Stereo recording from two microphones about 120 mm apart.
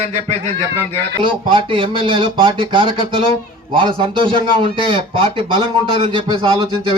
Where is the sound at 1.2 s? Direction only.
45° right (ahead or behind).